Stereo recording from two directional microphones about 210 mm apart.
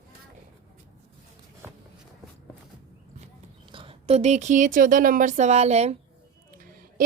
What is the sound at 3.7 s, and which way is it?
Speech, 25° right (ahead or behind).